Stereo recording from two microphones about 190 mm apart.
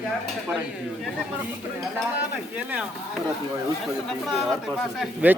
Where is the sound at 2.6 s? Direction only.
5° right (ahead or behind).